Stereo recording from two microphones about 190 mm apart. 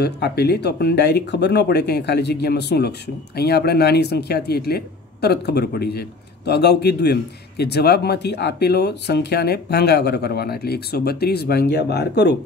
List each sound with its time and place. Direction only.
0.0 s speech: 60° left (ahead or behind)